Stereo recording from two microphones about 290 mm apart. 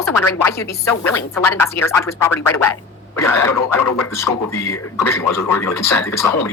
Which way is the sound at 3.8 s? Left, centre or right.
Left.